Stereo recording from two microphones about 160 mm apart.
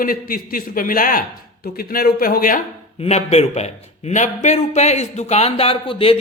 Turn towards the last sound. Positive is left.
turn(degrees=35)  # may be behind; listen again after turning